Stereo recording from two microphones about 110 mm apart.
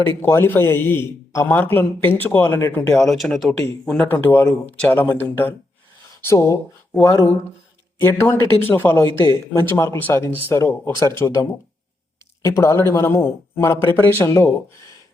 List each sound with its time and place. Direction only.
0.2 s a man's voice: 20° left (ahead or behind)
2.7 s speech: 5° left (ahead or behind)
4.1 s a man's voice: 20° left (ahead or behind)